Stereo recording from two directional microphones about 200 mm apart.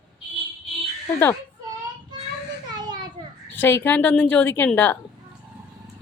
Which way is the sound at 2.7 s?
20° right (ahead or behind).